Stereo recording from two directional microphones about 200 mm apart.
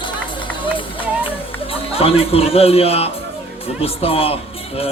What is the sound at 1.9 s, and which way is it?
Speech, 30° left (ahead or behind).